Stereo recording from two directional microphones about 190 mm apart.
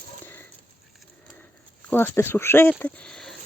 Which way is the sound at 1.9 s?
10° left (ahead or behind).